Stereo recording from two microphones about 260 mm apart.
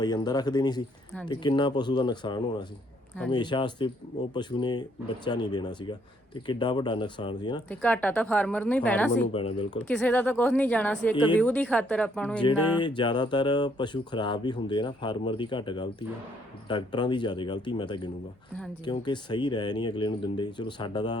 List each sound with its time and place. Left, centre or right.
0.0 s speech: centre
7.7 s a woman's voice: centre
9.1 s speech: left
9.9 s a woman's voice: centre
12.5 s speech: centre
12.8 s speech: centre